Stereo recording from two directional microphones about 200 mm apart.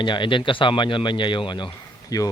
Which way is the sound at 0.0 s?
25° left (ahead or behind).